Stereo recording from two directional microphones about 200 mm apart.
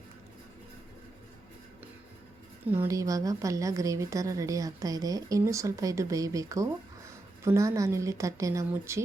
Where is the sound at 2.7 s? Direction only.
15° right (ahead or behind).